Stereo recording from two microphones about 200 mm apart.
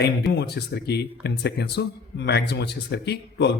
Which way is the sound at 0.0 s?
55° left (ahead or behind).